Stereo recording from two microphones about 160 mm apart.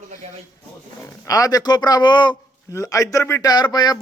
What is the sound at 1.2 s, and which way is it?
A man's voice, 20° left (ahead or behind).